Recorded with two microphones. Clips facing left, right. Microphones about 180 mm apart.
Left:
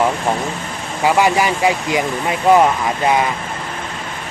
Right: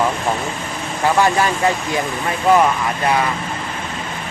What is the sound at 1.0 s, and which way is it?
Speech, 15° left (ahead or behind).